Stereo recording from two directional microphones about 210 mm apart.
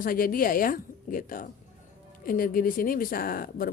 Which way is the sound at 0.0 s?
40° left (ahead or behind).